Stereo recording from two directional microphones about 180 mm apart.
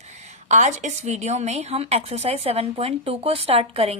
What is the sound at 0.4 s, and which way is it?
A woman's voice, 40° right (ahead or behind).